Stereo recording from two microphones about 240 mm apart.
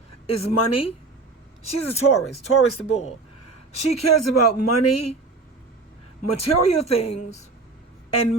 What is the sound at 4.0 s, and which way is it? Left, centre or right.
Speech, left.